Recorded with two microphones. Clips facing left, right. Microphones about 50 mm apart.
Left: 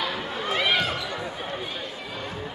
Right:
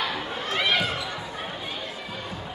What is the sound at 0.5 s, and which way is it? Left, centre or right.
Basketball bounce, centre.